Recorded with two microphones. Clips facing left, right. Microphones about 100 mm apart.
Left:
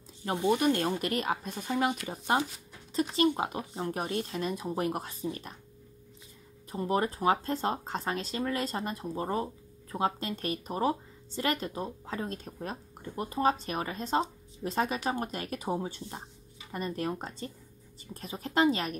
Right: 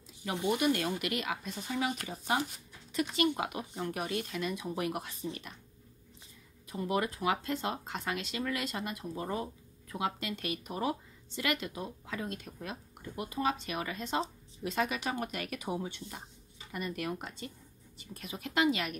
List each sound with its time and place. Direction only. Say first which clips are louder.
0.2 s speech: left 3 dB; 35° left (ahead or behind)
6.7 s speech: left 3 dB; 35° left (ahead or behind)